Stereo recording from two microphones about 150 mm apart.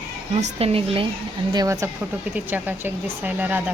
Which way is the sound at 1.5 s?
20° right (ahead or behind).